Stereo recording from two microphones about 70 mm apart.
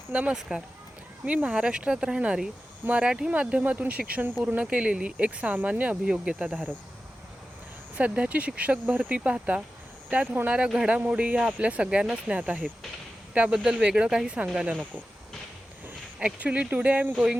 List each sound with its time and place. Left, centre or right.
0.1 s speech: right
0.3 s speech: centre
1.4 s speech: centre
2.8 s speech: right
7.9 s speech: centre
14.7 s speech: right
16.2 s speech: centre